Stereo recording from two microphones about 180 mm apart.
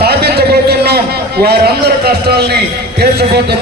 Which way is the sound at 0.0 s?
60° right (ahead or behind).